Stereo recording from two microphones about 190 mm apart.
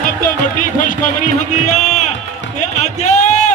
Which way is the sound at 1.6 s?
40° left (ahead or behind).